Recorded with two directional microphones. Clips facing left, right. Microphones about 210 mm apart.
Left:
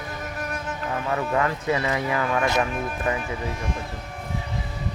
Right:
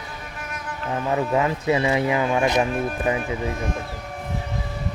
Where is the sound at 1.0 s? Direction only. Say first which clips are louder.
Right 3 dB; 20° right (ahead or behind).